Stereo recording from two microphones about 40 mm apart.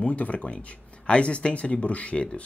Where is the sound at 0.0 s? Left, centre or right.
Left.